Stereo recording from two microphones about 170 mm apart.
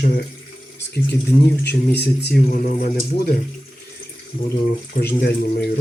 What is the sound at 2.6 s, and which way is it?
Speech, 55° left (ahead or behind).